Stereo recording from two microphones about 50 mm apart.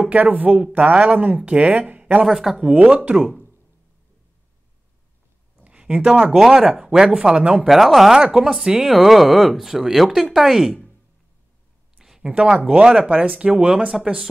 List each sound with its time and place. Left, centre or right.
0.0 s speech: right
2.2 s speech: centre
2.6 s speech: right
5.6 s a sound: right
6.3 s speech: centre
6.6 s speech: centre
7.6 s speech: centre
8.2 s speech: centre
12.0 s a sound: centre
12.3 s speech: right
14.0 s speech: centre